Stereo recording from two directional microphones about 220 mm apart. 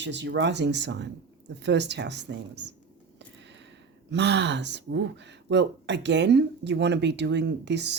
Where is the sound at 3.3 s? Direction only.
55° right (ahead or behind).